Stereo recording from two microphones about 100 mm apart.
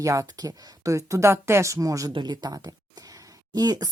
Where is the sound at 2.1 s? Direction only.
45° right (ahead or behind).